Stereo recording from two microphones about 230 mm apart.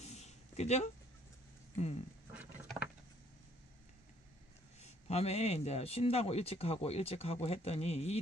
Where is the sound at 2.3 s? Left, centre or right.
Centre.